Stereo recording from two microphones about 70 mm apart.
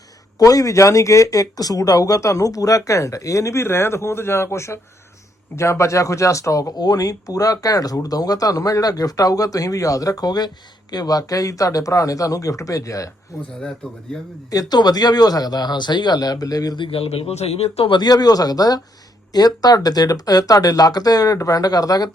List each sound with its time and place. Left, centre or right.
0.3 s speech: left
6.7 s speech: left
14.5 s speech: left
17.9 s speech: left